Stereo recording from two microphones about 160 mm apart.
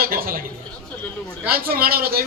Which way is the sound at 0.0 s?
65° right (ahead or behind).